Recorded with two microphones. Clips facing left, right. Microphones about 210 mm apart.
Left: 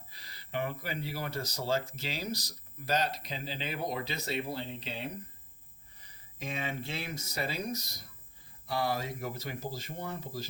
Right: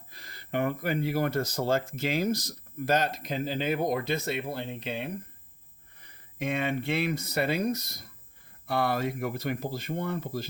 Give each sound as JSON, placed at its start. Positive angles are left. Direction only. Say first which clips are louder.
{"t": 0.1, "sound": "speech", "louder": "right 6 dB", "side_deg": -50}